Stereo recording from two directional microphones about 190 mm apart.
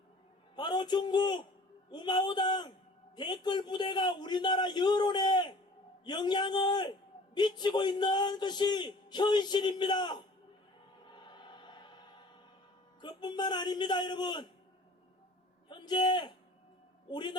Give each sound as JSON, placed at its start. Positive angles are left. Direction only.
{"t": 0.5, "sound": "a man's voice", "side_deg": 20}
{"t": 11.0, "sound": "a sound", "side_deg": 25}
{"t": 13.0, "sound": "a man's voice", "side_deg": 25}
{"t": 15.7, "sound": "a man's voice", "side_deg": 25}